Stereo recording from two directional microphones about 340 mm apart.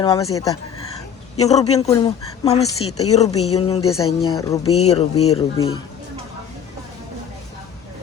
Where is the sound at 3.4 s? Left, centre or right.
Centre.